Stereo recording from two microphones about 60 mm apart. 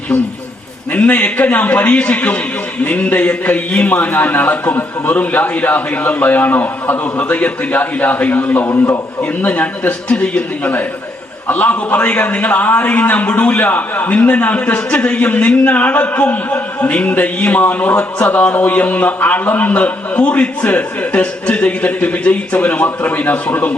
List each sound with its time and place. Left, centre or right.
0.9 s a man's voice: left
8.7 s a man's voice: left
9.4 s a man's voice: left